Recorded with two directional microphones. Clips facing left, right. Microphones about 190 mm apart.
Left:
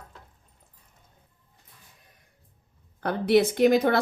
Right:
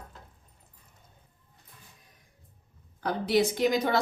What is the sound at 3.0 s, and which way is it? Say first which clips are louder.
A woman's voice: left 4 dB; 60° left (ahead or behind).